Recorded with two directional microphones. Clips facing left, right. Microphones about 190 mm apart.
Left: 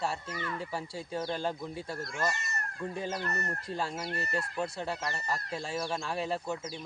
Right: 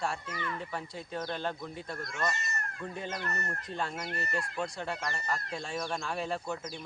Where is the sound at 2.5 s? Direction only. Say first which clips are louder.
Left 1 dB; 35° left (ahead or behind).